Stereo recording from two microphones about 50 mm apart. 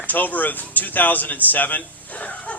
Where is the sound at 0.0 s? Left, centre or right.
Left.